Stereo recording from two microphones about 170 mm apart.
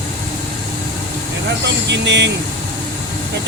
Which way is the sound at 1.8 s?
90° right.